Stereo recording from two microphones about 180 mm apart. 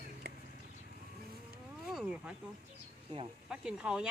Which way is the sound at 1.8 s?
5° right (ahead or behind).